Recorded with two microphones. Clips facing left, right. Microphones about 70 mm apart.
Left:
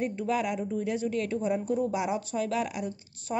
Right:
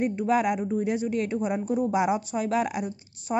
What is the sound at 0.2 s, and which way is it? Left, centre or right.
Speech, right.